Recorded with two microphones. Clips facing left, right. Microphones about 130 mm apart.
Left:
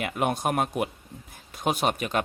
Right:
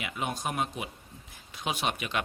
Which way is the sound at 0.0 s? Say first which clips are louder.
Left 7 dB; 50° left (ahead or behind).